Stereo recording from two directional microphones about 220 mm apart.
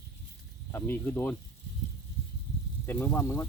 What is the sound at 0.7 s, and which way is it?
Speech, 10° left (ahead or behind).